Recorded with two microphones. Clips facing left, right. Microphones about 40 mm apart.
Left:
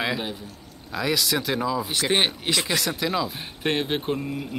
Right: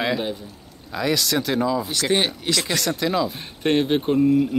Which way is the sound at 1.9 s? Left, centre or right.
Left.